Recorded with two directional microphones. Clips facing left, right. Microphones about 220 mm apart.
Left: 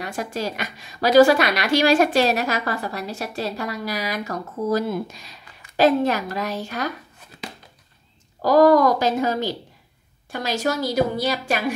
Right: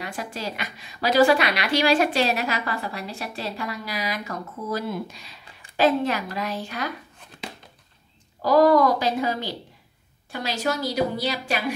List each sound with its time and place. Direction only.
0.0 s a woman's voice: 45° left (ahead or behind)
7.2 s a sound: centre (ahead or behind)
8.4 s a woman's voice: 45° left (ahead or behind)